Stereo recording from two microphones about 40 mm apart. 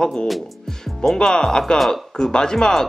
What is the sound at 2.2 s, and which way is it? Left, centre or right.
Speech, centre.